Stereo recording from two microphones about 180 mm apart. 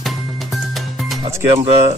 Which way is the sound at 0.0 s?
Centre (ahead or behind).